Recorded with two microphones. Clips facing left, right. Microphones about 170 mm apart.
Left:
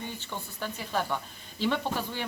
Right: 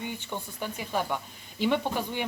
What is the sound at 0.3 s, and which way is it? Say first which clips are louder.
Speech: right 2 dB; 15° right (ahead or behind).